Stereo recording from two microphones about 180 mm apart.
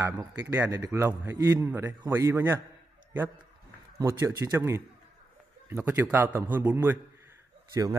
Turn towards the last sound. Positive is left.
turn(degrees=-15)  # may be behind; listen again after turning